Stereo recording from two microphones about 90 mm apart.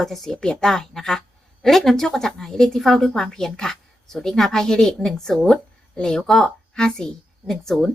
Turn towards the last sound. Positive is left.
turn(degrees=5)  # may be behind; listen again after turning